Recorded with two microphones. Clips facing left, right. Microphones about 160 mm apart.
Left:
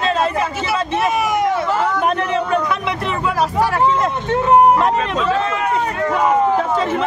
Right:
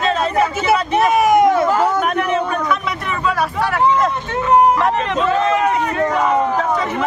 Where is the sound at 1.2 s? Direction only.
50° right (ahead or behind).